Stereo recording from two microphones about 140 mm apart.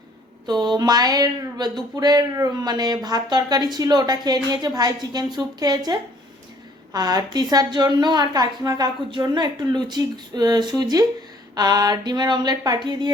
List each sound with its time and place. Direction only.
0.4 s a woman's voice: 30° right (ahead or behind)